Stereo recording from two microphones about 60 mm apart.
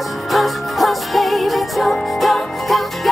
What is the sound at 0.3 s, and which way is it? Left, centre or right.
Music, centre.